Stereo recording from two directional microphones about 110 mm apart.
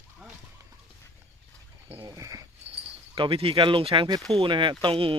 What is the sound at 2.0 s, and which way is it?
Speech, 30° right (ahead or behind).